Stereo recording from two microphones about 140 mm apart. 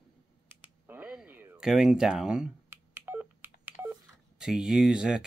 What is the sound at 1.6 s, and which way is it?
Telephone dialing, 5° right (ahead or behind).